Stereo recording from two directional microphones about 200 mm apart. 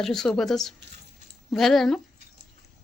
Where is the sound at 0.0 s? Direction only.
Centre (ahead or behind).